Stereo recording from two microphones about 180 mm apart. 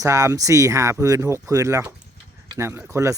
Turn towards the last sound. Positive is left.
turn(degrees=-15)  # may be behind; listen again after turning